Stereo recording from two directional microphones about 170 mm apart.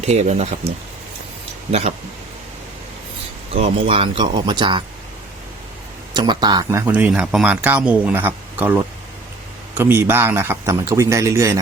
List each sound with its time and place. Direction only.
0.0 s speech: 40° right (ahead or behind)
3.5 s speech: 35° right (ahead or behind)
6.1 s speech: 25° right (ahead or behind)